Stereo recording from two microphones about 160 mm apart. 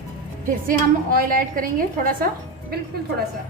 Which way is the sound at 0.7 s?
60° right (ahead or behind).